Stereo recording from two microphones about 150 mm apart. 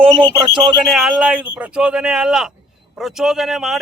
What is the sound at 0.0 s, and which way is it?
Speech, 35° right (ahead or behind).